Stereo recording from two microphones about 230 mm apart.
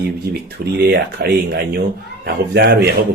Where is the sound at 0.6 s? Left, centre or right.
Right.